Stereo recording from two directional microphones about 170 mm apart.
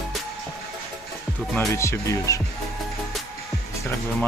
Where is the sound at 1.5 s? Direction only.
15° left (ahead or behind).